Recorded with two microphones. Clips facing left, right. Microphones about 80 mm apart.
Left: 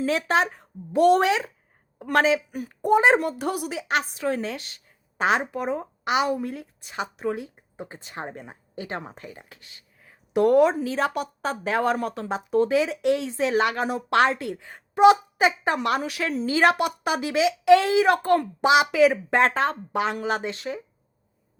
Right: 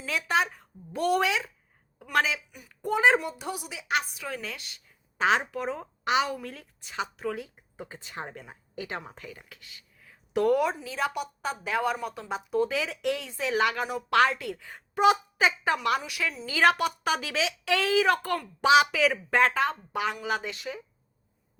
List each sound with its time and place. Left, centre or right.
0.1 s a woman's voice: left
1.2 s speech: left
2.8 s speech: left
3.2 s a woman's voice: left
10.8 s speech: left
16.5 s speech: left